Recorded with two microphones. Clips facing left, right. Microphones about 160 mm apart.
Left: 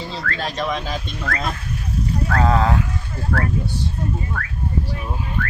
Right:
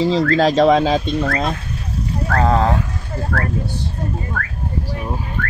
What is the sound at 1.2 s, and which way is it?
Speech, 25° right (ahead or behind).